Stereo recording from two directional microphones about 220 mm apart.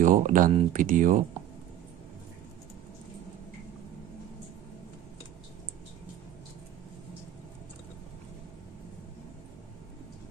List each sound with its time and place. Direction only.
0.0 s speech: 35° right (ahead or behind)